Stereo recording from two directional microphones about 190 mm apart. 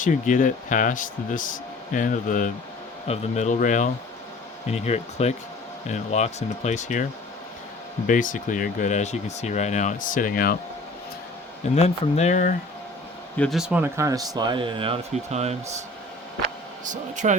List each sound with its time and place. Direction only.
0.0 s speech: 40° left (ahead or behind)
11.7 s speech: 35° left (ahead or behind)
13.3 s speech: 5° left (ahead or behind); by 15.5 s 35° right (ahead or behind)
16.4 s a sound: 40° right (ahead or behind)